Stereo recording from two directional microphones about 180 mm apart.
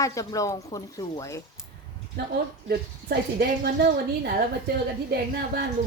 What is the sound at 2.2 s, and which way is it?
Speech, 65° right (ahead or behind).